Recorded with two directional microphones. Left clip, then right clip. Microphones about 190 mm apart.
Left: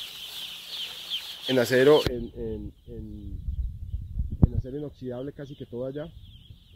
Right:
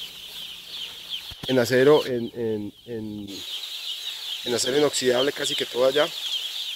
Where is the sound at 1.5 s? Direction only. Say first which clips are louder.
Right 2 dB; 15° right (ahead or behind).